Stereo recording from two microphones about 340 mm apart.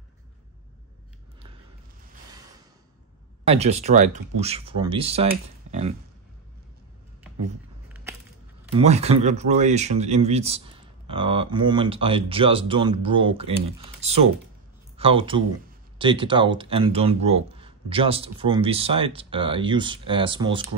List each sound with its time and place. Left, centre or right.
3.4 s speech: centre
7.9 s a sound: centre
8.7 s speech: centre